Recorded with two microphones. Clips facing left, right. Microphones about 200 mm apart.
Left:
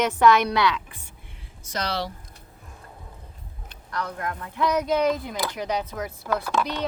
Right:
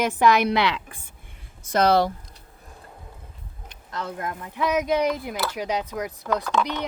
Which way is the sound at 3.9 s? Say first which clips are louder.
Even; 25° right (ahead or behind).